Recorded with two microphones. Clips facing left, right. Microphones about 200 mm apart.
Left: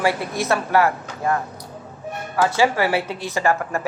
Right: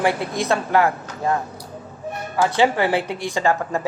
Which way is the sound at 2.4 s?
20° right (ahead or behind).